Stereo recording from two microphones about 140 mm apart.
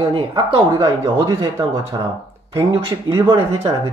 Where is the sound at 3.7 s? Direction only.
30° right (ahead or behind).